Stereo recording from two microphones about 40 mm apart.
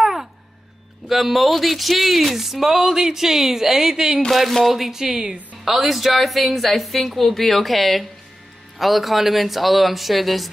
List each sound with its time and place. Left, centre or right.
0.0 s a sound: centre
1.0 s speech: centre
4.3 s a woman's voice: centre